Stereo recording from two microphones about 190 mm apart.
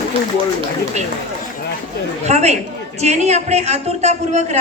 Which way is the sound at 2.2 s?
35° right (ahead or behind).